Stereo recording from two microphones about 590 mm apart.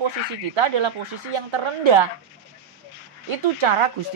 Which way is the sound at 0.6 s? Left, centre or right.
Right.